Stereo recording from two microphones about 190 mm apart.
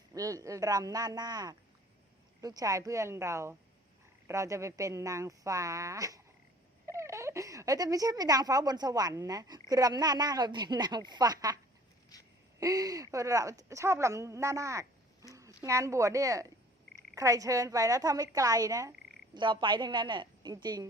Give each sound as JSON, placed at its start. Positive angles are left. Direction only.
{"t": 0.1, "sound": "a woman's voice", "side_deg": -15}
{"t": 12.1, "sound": "a sound", "side_deg": 20}
{"t": 12.5, "sound": "a woman's voice", "side_deg": -20}